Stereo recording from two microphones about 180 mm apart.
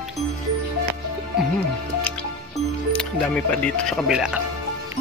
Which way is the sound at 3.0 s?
5° left (ahead or behind).